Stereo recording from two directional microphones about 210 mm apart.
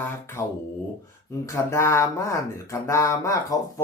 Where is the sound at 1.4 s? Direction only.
15° left (ahead or behind).